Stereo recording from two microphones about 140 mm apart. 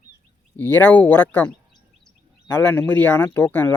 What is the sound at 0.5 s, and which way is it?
Speech, 15° left (ahead or behind).